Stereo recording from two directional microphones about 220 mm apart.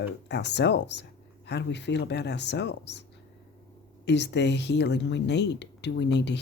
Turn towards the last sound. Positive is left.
turn(degrees=50)  # may be behind; listen again after turning